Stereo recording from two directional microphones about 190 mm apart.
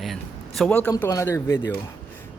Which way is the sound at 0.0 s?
Centre (ahead or behind).